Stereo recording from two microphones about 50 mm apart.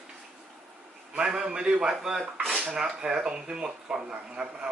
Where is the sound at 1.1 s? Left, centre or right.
Centre.